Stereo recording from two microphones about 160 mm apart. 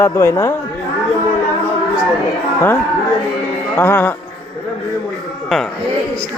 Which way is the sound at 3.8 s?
15° left (ahead or behind).